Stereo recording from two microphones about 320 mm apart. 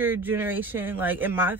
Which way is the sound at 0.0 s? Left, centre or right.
Centre.